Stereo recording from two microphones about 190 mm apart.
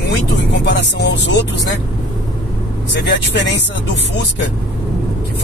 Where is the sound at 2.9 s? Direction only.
65° left (ahead or behind).